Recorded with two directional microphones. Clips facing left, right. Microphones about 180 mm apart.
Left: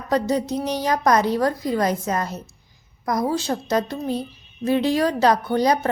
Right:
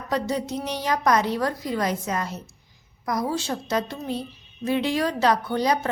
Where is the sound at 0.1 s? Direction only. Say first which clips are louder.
Left 5 dB; 40° left (ahead or behind).